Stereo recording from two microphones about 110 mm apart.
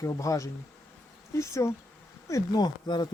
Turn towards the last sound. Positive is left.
turn(degrees=40)  # may be behind; listen again after turning